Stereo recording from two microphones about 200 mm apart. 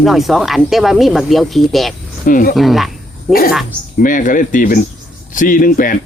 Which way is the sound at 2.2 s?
45° left (ahead or behind).